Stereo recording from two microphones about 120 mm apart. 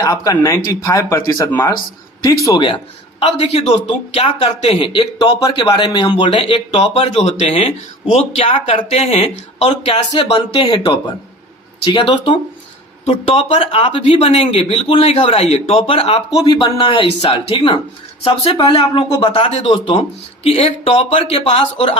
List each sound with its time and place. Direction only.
0.0 s speech: 30° left (ahead or behind)
1.5 s speech: 20° left (ahead or behind)
2.6 s a man's voice: 45° left (ahead or behind)
6.8 s a man's voice: 60° left (ahead or behind)
15.8 s a man's voice: 45° left (ahead or behind)
18.5 s a man's voice: 45° left (ahead or behind)
19.3 s speech: 60° left (ahead or behind)
19.7 s a man's voice: 50° left (ahead or behind)